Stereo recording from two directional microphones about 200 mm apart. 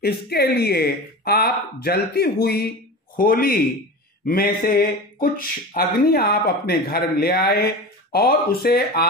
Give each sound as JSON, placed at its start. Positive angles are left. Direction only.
{"t": 0.0, "sound": "speech", "side_deg": 50}